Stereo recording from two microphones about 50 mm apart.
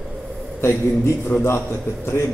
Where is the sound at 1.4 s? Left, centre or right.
Left.